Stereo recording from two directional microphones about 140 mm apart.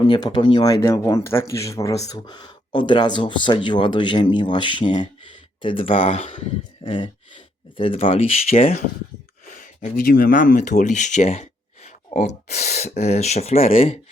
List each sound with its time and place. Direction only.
0.1 s speech: 30° left (ahead or behind)
9.5 s speech: 70° left (ahead or behind); by 14.0 s 45° left (ahead or behind)